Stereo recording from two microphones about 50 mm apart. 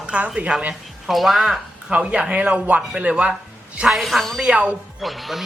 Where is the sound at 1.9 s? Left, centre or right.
Right.